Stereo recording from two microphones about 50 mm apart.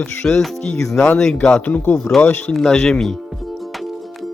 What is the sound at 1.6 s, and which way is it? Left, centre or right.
Speech, left.